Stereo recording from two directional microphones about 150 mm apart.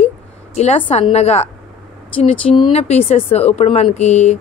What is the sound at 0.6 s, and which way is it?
Speech, 40° left (ahead or behind).